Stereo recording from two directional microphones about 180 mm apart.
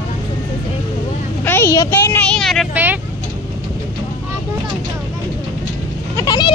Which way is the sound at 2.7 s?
10° right (ahead or behind).